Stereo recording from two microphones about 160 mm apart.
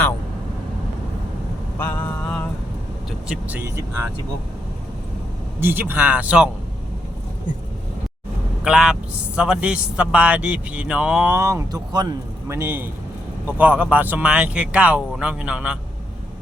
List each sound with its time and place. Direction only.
1.8 s vehicle: 10° left (ahead or behind)
3.1 s a man's voice: 10° right (ahead or behind)
5.5 s a man's voice: 15° right (ahead or behind)
8.6 s a man's voice: 5° right (ahead or behind)